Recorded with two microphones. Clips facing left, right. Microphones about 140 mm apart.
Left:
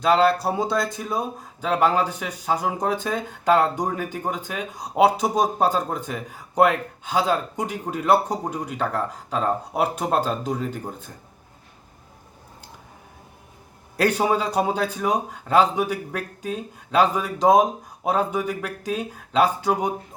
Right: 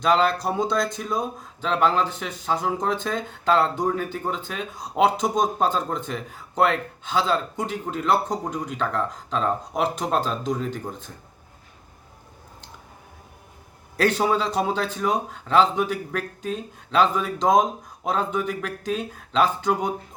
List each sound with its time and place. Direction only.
0.4 s speech: 5° left (ahead or behind)
13.9 s speech: 10° left (ahead or behind)